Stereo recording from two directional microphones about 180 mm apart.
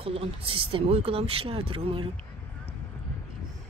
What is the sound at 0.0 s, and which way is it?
Speech, 30° right (ahead or behind).